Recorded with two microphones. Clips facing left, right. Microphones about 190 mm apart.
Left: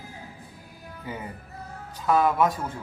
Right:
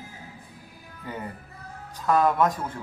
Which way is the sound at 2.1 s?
5° left (ahead or behind).